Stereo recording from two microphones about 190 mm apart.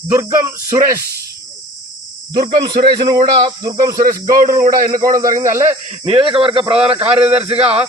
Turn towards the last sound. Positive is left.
turn(degrees=-30)  # may be behind; listen again after turning